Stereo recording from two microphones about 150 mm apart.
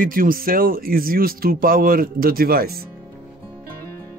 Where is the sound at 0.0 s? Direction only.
70° right (ahead or behind); by 2.9 s 90° right.